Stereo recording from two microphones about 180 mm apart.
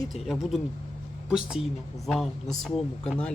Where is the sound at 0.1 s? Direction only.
Centre (ahead or behind).